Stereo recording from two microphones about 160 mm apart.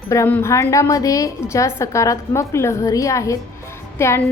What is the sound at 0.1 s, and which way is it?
A woman's voice, 15° left (ahead or behind).